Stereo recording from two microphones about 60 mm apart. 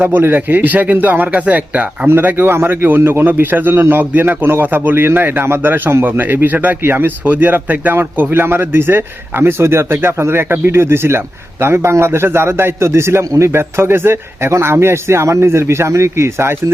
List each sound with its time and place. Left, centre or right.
0.0 s speech: right
2.0 s a man's voice: right